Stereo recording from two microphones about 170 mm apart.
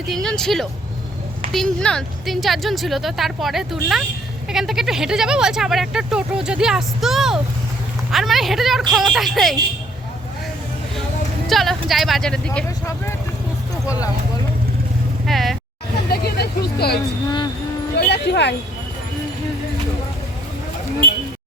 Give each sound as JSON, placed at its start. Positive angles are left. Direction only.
{"t": 0.1, "sound": "speech", "side_deg": 5}
{"t": 11.4, "sound": "speech", "side_deg": 0}
{"t": 15.3, "sound": "speech", "side_deg": 0}
{"t": 16.2, "sound": "vehicle", "side_deg": 70}
{"t": 17.2, "sound": "music", "side_deg": 25}
{"t": 17.9, "sound": "music", "side_deg": 80}